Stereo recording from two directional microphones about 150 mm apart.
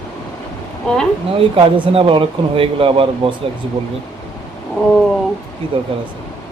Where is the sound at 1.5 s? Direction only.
35° right (ahead or behind).